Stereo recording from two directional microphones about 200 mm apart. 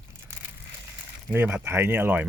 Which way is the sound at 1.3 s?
10° right (ahead or behind).